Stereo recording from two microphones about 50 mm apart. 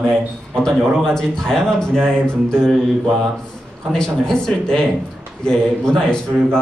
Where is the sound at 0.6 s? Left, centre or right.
Centre.